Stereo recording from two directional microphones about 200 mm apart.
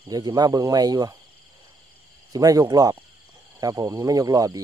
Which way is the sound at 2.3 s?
15° right (ahead or behind).